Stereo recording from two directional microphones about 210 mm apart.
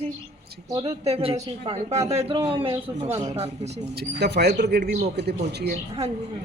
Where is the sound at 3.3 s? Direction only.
30° right (ahead or behind).